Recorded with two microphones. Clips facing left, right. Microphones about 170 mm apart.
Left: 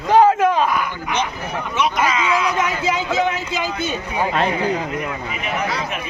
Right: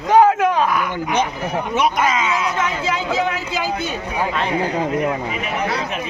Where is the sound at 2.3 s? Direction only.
25° right (ahead or behind).